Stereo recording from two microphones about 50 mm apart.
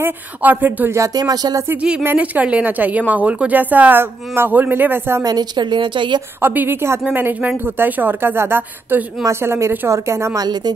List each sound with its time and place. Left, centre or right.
0.4 s a woman's voice: right
2.1 s a woman's voice: right
6.4 s speech: right
9.2 s speech: right